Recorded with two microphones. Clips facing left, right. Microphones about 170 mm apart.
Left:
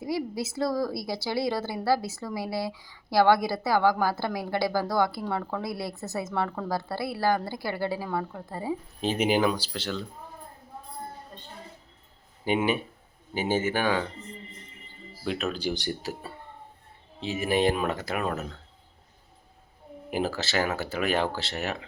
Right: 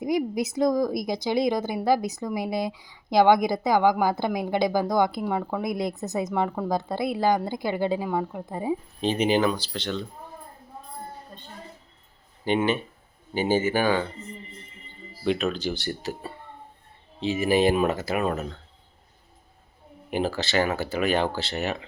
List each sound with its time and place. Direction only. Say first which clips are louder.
0.0 s a woman's voice: right 5 dB; 15° right (ahead or behind)
9.0 s speech: right 1 dB; 5° left (ahead or behind)
12.5 s speech: right 2 dB; 10° left (ahead or behind)
15.2 s speech: right 4 dB; centre (ahead or behind)
15.9 s speech: right 2 dB; 5° left (ahead or behind)
20.1 s speech: right 2 dB; 5° left (ahead or behind)